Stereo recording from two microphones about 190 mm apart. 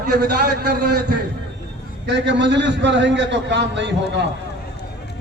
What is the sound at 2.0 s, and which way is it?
A man's voice, 65° right (ahead or behind).